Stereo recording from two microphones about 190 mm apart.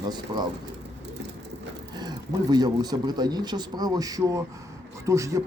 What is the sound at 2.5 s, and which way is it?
A man's voice, 20° right (ahead or behind).